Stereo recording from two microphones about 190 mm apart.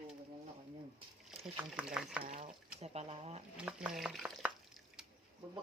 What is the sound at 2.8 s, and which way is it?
Speech, 35° right (ahead or behind).